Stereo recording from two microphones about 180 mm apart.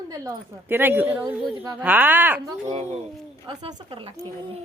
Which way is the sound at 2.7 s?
40° right (ahead or behind).